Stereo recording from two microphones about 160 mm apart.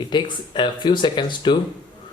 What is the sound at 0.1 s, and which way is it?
Speech, 30° left (ahead or behind).